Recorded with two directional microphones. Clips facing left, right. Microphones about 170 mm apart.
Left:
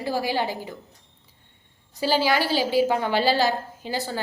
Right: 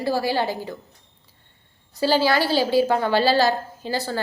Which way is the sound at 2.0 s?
15° left (ahead or behind).